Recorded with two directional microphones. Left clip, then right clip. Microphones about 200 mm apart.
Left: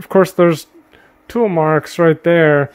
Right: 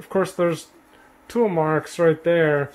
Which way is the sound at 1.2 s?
40° left (ahead or behind).